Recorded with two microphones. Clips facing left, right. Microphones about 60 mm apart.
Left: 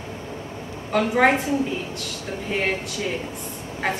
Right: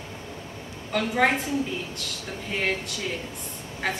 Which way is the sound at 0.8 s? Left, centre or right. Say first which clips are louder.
Left 5 dB; centre.